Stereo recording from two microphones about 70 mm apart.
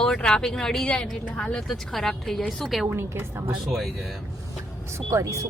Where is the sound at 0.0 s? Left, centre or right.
Centre.